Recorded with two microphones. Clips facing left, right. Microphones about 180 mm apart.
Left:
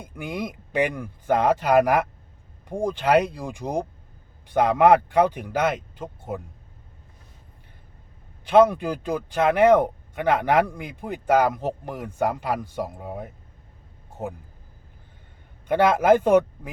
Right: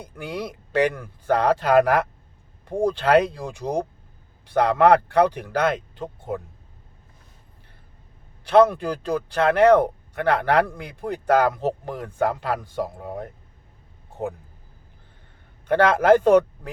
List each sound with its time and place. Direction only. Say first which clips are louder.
0.2 s speech: even; 15° left (ahead or behind)
8.4 s speech: even; 15° left (ahead or behind)
15.6 s speech: right 1 dB; 10° left (ahead or behind)